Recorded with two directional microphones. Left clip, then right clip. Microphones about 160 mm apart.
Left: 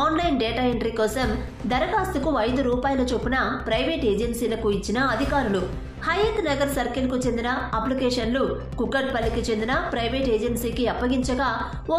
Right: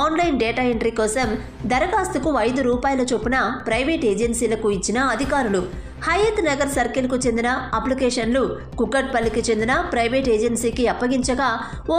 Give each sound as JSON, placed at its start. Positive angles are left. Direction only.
{"t": 0.0, "sound": "a woman's voice", "side_deg": -35}